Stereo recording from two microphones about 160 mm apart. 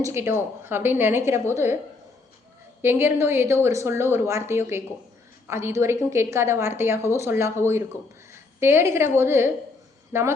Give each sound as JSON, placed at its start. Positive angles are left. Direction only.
{"t": 0.0, "sound": "a woman's voice", "side_deg": -15}
{"t": 2.8, "sound": "a woman's voice", "side_deg": -15}